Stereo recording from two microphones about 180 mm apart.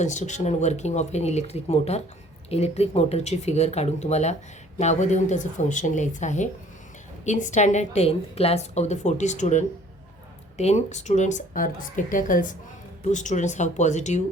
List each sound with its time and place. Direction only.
0.0 s a woman's voice: 40° left (ahead or behind)